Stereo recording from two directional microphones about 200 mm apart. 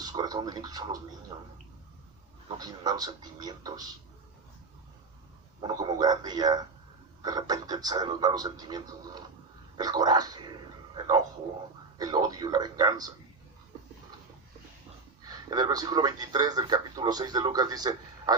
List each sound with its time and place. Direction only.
0.0 s a man's voice: 20° right (ahead or behind)
2.6 s a man's voice: 20° right (ahead or behind)
5.6 s a man's voice: 20° right (ahead or behind)
10.9 s a sound: 20° right (ahead or behind)
11.9 s a man's voice: 20° right (ahead or behind)
15.3 s a man's voice: 20° right (ahead or behind)